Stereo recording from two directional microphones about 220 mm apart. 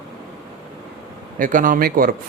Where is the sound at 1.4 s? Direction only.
40° right (ahead or behind).